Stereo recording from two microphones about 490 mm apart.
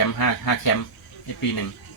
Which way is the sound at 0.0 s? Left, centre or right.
Left.